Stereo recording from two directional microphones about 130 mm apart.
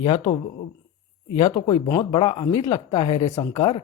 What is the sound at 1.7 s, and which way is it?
Speech, 35° left (ahead or behind).